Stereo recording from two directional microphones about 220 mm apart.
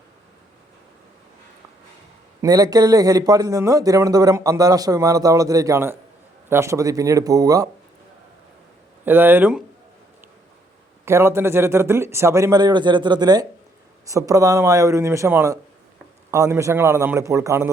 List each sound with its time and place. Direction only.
2.4 s a man's voice: 15° right (ahead or behind)
9.0 s a man's voice: 10° right (ahead or behind)
11.0 s a man's voice: 10° right (ahead or behind)